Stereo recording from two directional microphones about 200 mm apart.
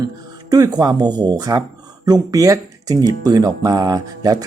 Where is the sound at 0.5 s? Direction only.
20° right (ahead or behind).